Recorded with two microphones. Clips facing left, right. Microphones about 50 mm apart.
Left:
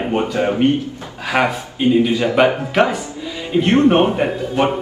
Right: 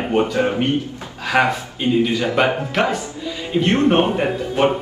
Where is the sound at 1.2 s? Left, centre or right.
Centre.